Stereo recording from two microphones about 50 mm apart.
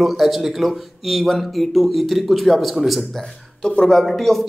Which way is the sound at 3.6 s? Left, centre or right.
Centre.